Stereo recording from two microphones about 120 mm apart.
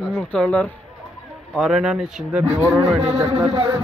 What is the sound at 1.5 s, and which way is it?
Speech, centre (ahead or behind).